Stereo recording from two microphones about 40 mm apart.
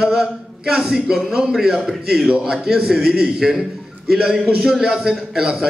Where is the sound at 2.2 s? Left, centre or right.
Centre.